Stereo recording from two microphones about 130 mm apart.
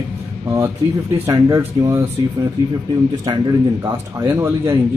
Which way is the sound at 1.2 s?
25° right (ahead or behind).